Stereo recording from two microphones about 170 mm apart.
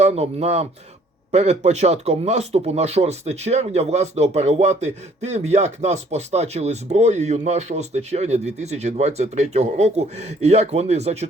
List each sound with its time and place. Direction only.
0.0 s speech: 40° right (ahead or behind)